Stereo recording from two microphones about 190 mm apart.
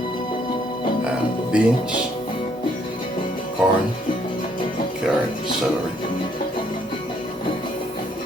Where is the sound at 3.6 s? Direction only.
Centre (ahead or behind).